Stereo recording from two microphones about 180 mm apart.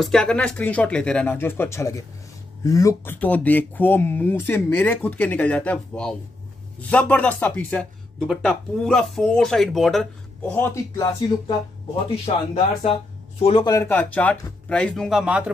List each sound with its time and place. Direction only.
0.0 s speech: 5° left (ahead or behind)
10.5 s speech: 15° left (ahead or behind)
13.4 s a man's voice: 30° left (ahead or behind)
13.7 s speech: 10° left (ahead or behind); by 15.5 s 5° right (ahead or behind)